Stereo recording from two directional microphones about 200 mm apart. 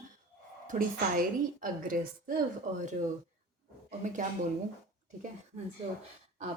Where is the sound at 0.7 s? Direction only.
40° right (ahead or behind).